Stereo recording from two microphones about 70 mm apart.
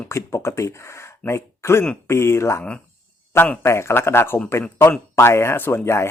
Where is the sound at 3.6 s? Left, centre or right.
Left.